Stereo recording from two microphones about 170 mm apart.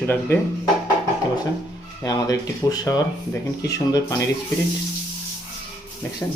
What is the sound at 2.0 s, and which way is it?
Speech, 20° left (ahead or behind).